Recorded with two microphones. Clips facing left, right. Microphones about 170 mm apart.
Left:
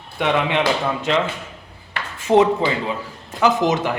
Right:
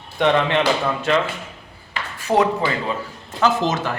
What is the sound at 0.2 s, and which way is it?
Speech, 10° left (ahead or behind).